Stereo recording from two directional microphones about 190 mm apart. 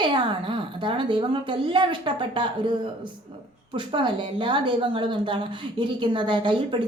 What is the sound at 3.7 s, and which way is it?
A woman's voice, 25° right (ahead or behind).